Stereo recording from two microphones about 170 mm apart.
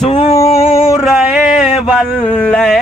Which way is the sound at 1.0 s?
5° right (ahead or behind).